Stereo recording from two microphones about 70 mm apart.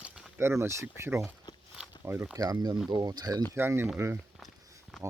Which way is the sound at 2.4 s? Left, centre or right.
Right.